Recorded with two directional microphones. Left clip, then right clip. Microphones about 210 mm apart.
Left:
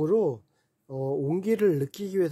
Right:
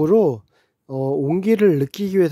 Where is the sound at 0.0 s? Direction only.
35° right (ahead or behind).